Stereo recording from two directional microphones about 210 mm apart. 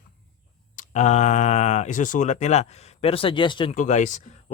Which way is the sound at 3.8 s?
35° left (ahead or behind).